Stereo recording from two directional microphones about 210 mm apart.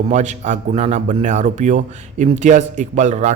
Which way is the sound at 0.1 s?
35° right (ahead or behind).